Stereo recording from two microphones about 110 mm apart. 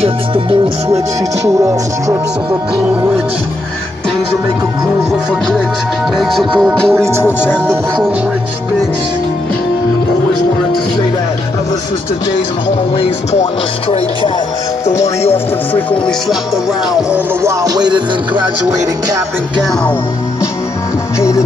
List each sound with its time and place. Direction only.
0.0 s speech: 55° right (ahead or behind)
1.6 s speech: 30° right (ahead or behind)
6.1 s music: centre (ahead or behind)
7.2 s speech: 20° left (ahead or behind)
12.9 s music: 75° left (ahead or behind)
15.7 s speech: 10° left (ahead or behind)
17.4 s music: 30° right (ahead or behind)
21.2 s music: 25° left (ahead or behind)